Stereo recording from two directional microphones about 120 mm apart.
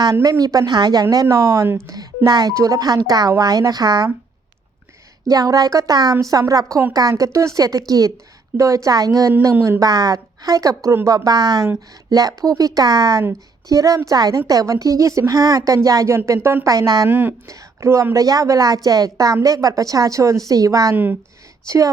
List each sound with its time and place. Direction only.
0.0 s a woman's voice: 30° right (ahead or behind)
2.0 s speech: 35° right (ahead or behind)
5.3 s a woman's voice: 30° right (ahead or behind)
9.8 s a woman's voice: 30° right (ahead or behind)
20.9 s speech: 15° right (ahead or behind)